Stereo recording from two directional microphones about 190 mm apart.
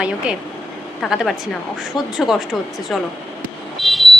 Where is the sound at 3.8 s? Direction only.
Centre (ahead or behind).